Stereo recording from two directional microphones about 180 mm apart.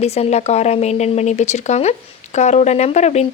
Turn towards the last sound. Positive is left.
turn(degrees=40)  # may be behind; listen again after turning